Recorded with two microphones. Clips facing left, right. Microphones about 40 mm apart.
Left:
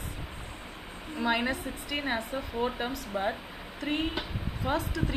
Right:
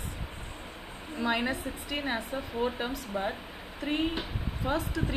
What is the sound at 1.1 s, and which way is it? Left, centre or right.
A woman's voice, centre.